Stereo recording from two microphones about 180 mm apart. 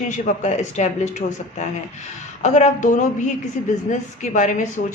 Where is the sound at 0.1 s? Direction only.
40° left (ahead or behind).